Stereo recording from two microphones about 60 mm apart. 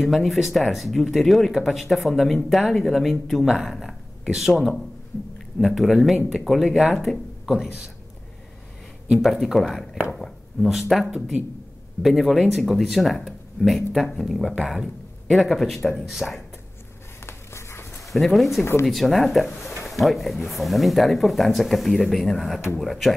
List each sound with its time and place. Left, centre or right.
0.0 s speech: centre
9.1 s speech: centre
10.1 s a sound: centre
12.0 s speech: centre
17.3 s writing: left
18.1 s speech: centre
18.6 s speech: left
18.9 s speech: centre